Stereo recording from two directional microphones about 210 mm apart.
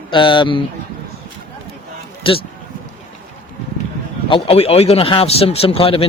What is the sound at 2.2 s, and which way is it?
Speech, 25° left (ahead or behind).